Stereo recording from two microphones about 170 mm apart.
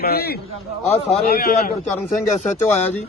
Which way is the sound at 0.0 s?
65° left (ahead or behind).